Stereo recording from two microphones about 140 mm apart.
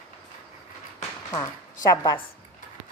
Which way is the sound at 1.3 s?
25° left (ahead or behind).